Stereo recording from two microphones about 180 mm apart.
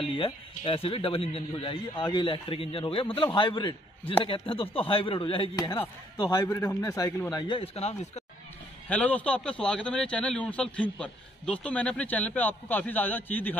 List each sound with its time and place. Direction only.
0.0 s speech: 30° left (ahead or behind)
8.8 s a man's voice: 10° left (ahead or behind)